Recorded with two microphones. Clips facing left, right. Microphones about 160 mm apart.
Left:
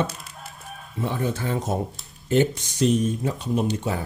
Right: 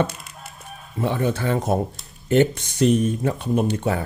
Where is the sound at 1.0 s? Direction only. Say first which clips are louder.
Right 4 dB; 70° right (ahead or behind).